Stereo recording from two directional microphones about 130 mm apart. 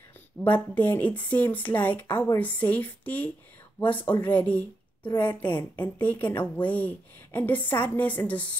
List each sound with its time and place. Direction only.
0.4 s a woman's voice: 15° left (ahead or behind)
5.1 s a woman's voice: 35° left (ahead or behind)
5.9 s a woman's voice: 10° left (ahead or behind)